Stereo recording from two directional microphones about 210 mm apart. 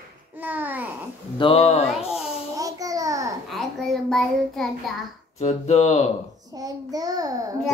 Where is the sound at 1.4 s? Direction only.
25° left (ahead or behind).